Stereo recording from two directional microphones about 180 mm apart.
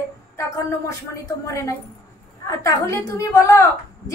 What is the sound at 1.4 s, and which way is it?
A woman's voice, 20° left (ahead or behind).